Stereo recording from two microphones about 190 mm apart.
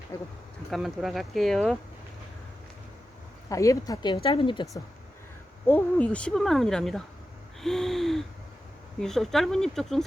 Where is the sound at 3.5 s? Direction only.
15° left (ahead or behind).